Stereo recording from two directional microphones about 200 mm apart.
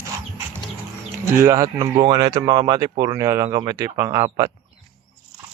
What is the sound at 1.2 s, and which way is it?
Speech, 15° right (ahead or behind).